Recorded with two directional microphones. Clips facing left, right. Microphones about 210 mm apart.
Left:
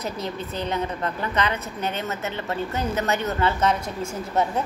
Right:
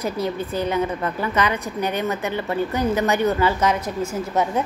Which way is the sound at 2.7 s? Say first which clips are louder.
Right 5 dB; 15° right (ahead or behind).